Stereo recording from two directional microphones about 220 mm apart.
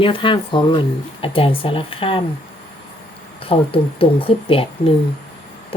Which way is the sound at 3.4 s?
25° left (ahead or behind).